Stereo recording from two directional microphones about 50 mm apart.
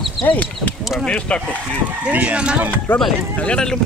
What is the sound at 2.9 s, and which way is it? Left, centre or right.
Speech, left.